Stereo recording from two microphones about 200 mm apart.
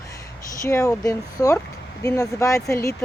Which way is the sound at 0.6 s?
15° left (ahead or behind).